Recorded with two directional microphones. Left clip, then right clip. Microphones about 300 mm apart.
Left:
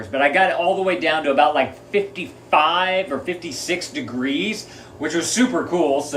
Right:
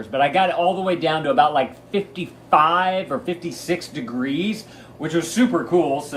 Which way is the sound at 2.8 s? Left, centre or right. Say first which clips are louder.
Left 1 dB; right.